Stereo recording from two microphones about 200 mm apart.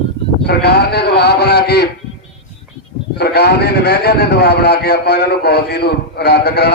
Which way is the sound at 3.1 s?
55° left (ahead or behind).